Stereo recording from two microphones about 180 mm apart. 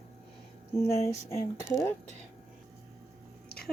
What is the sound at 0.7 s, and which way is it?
Speech, 15° left (ahead or behind).